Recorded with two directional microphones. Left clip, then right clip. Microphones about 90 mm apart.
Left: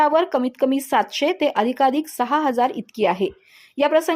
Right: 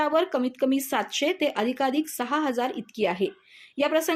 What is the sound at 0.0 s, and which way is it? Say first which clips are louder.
A woman's voice: left 6 dB; 45° left (ahead or behind).